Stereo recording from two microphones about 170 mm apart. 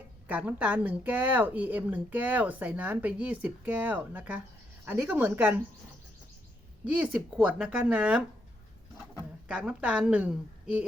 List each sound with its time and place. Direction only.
0.3 s speech: 10° right (ahead or behind)
6.8 s speech: 10° right (ahead or behind)
9.5 s speech: 5° right (ahead or behind)